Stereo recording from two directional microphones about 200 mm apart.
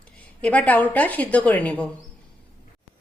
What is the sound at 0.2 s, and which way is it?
A woman's voice, 5° left (ahead or behind).